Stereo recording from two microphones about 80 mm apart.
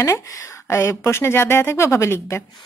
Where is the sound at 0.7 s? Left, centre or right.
Left.